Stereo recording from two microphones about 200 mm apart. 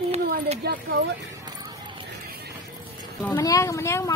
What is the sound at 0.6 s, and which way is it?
Speech, 50° right (ahead or behind).